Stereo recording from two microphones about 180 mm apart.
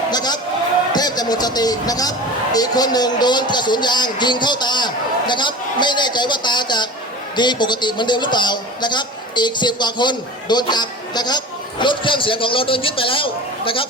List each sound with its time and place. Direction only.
0.1 s a man's voice: 25° left (ahead or behind)